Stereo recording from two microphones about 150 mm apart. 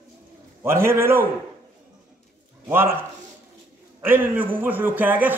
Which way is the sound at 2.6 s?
15° right (ahead or behind).